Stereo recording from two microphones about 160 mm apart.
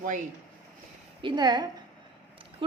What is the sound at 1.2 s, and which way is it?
Speech, 30° right (ahead or behind).